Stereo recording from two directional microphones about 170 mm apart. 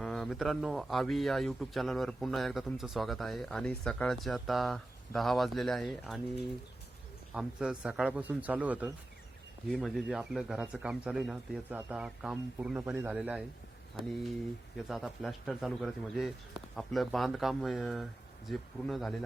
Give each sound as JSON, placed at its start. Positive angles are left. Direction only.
{"t": 0.0, "sound": "speech", "side_deg": 5}
{"t": 7.3, "sound": "speech", "side_deg": -5}
{"t": 9.6, "sound": "speech", "side_deg": 5}
{"t": 14.8, "sound": "speech", "side_deg": 0}